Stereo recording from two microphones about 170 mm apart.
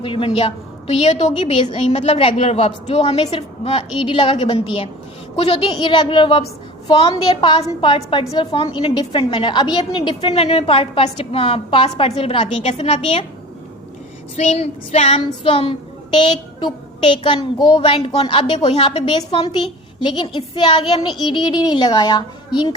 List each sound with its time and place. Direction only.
0.0 s a woman's voice: 30° left (ahead or behind)
14.3 s a woman's voice: 40° left (ahead or behind)